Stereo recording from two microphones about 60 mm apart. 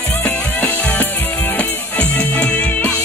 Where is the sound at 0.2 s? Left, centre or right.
Left.